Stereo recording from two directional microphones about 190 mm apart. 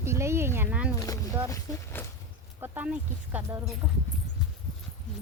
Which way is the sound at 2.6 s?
10° right (ahead or behind).